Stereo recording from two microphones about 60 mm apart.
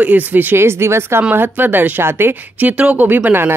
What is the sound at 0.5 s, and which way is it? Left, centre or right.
Speech, right.